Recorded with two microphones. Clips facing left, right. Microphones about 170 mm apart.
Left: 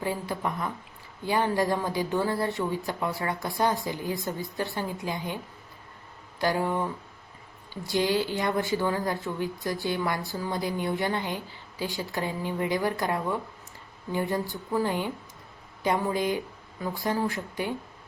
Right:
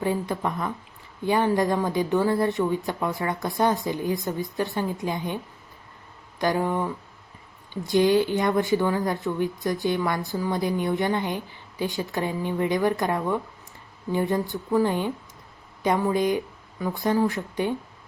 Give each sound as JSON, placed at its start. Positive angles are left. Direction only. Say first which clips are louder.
{"t": 0.0, "sound": "speech", "louder": "right 4 dB", "side_deg": -20}
{"t": 6.4, "sound": "speech", "louder": "right 2 dB", "side_deg": -15}